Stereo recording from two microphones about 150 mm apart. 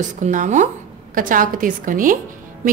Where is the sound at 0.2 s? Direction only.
55° right (ahead or behind).